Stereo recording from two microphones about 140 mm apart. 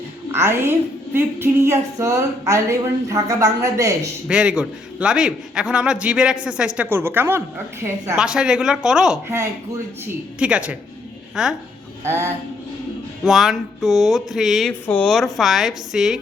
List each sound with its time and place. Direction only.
0.3 s a woman's voice: 20° right (ahead or behind)
4.3 s a man's voice: 5° right (ahead or behind)
8.1 s speech: 5° right (ahead or behind)
10.4 s a man's voice: 10° right (ahead or behind)
12.0 s a man's voice: 20° right (ahead or behind)
13.2 s speech: centre (ahead or behind)
14.7 s speech: 10° left (ahead or behind)